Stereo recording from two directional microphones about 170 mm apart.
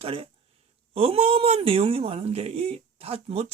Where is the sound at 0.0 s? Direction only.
35° right (ahead or behind).